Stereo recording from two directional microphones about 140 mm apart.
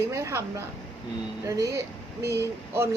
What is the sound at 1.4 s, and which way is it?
A woman's voice, 20° right (ahead or behind).